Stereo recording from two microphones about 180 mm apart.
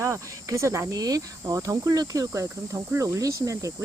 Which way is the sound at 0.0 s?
15° right (ahead or behind).